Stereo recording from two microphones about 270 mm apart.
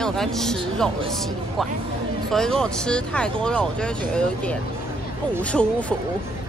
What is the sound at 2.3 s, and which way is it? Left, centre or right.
Speech, centre.